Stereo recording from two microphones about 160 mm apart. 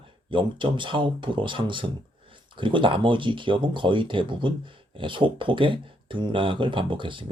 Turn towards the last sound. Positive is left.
turn(degrees=-30)  # may be behind; listen again after turning